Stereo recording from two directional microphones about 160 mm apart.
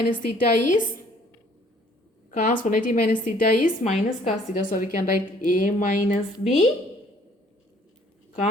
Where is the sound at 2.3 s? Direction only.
55° left (ahead or behind).